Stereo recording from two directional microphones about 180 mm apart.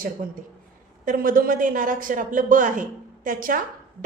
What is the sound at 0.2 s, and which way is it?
A woman's voice, 50° right (ahead or behind).